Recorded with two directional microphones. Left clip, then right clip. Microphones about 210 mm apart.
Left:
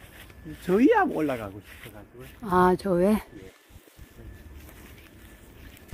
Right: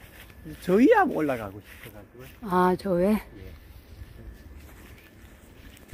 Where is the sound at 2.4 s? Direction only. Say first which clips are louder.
Left 2 dB; 10° left (ahead or behind).